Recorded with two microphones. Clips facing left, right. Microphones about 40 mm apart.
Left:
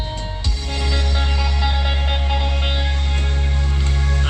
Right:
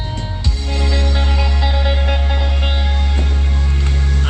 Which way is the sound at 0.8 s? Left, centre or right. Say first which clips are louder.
Right 3 dB; right.